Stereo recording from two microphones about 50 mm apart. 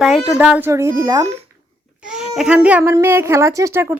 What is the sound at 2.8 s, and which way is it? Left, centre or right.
Speech, right.